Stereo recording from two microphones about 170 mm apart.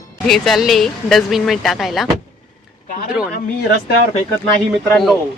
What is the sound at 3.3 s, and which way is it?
Speech, 70° left (ahead or behind).